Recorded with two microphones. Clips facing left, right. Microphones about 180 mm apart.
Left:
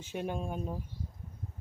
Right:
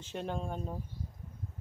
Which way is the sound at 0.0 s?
10° left (ahead or behind).